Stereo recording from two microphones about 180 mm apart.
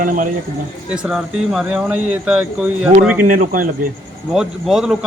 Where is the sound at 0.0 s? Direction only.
45° right (ahead or behind).